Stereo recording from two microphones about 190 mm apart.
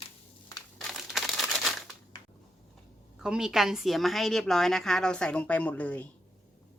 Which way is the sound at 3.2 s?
5° right (ahead or behind).